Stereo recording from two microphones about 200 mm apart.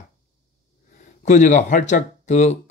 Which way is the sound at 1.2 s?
40° left (ahead or behind).